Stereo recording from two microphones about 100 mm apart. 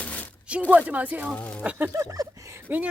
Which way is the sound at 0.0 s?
15° left (ahead or behind).